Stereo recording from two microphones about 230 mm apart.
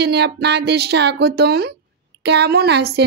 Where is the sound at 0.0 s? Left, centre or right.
Right.